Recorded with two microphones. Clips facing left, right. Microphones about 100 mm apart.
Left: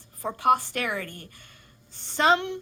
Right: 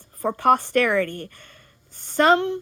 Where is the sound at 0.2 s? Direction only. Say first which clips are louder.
Right 4 dB; 50° right (ahead or behind).